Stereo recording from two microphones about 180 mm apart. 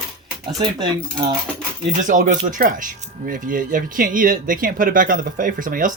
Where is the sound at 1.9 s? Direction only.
45° right (ahead or behind).